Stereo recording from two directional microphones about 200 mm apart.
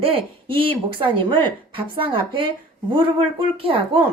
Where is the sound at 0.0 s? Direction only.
25° right (ahead or behind).